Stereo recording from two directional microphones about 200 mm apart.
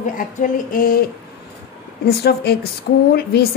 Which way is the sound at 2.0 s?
55° left (ahead or behind).